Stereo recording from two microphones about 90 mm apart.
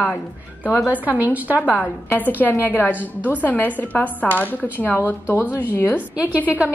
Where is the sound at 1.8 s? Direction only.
20° left (ahead or behind).